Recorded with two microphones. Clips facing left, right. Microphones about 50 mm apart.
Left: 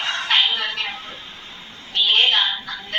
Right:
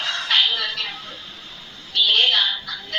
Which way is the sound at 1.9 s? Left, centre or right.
Left.